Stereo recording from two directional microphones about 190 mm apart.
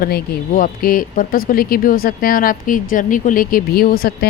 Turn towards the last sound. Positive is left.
turn(degrees=50)  # may be behind; listen again after turning